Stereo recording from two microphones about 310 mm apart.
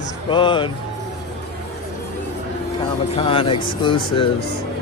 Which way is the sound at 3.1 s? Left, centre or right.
Centre.